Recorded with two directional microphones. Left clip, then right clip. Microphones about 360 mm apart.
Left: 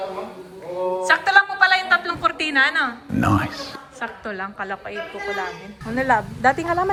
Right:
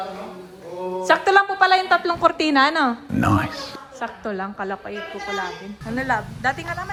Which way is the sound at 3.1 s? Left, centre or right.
Centre.